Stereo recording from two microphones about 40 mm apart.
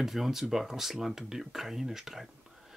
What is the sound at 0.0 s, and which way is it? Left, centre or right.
Speech, centre.